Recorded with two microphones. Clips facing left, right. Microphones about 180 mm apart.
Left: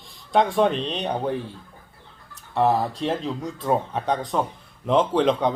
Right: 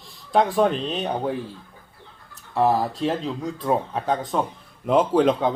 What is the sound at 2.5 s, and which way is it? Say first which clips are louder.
Speech: even; centre (ahead or behind).